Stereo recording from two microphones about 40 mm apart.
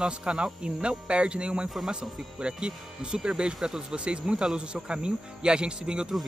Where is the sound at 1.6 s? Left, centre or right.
Centre.